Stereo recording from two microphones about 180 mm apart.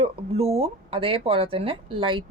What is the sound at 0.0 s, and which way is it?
Speech, 35° right (ahead or behind).